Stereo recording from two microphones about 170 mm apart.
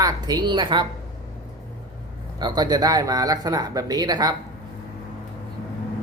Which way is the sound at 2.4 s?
25° right (ahead or behind).